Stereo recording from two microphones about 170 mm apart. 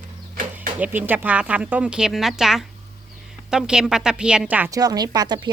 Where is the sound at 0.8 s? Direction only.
10° right (ahead or behind).